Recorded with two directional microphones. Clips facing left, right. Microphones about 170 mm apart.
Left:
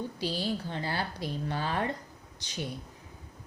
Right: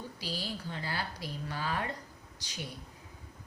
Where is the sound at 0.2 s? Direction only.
25° left (ahead or behind).